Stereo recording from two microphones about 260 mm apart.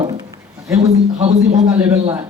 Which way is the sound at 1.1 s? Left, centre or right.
Right.